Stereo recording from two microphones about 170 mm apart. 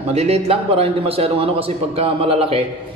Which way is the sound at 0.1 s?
35° right (ahead or behind).